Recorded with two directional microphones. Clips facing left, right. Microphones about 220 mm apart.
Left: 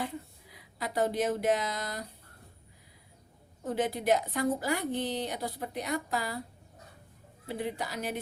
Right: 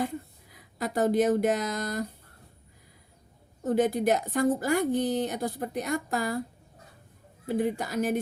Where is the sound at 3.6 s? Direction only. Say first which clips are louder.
Right 7 dB; 45° right (ahead or behind).